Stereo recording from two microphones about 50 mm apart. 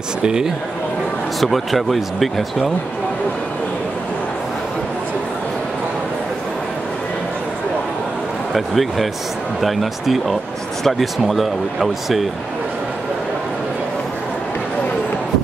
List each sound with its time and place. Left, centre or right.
0.2 s speech: centre
1.4 s speech: centre
8.5 s speech: centre